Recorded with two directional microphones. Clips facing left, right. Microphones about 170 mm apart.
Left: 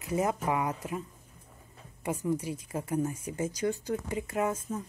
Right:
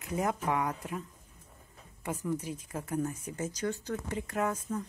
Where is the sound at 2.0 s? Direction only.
10° left (ahead or behind).